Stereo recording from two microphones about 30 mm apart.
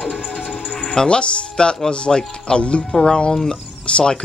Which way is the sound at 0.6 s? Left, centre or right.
Left.